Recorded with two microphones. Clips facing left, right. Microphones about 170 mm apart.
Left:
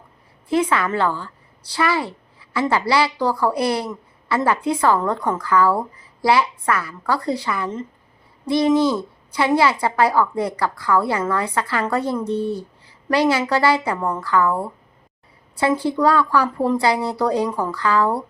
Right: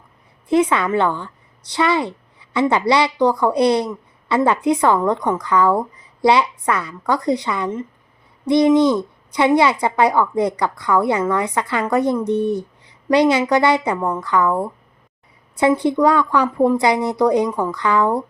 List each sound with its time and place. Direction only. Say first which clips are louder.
0.4 s a woman's voice: right 3 dB; 20° right (ahead or behind)
15.8 s speech: right 2 dB; 20° right (ahead or behind)